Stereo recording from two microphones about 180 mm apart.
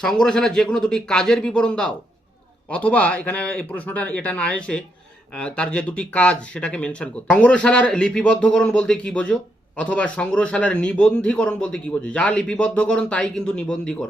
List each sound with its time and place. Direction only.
0.0 s a man's voice: 5° left (ahead or behind)